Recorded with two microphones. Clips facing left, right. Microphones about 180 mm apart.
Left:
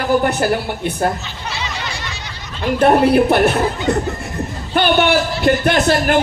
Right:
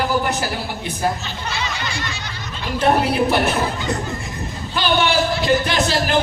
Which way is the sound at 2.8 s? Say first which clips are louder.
Left 5 dB; 60° left (ahead or behind).